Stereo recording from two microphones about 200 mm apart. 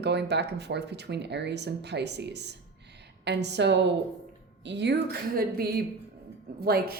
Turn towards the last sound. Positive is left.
turn(degrees=-50)  # may be behind; listen again after turning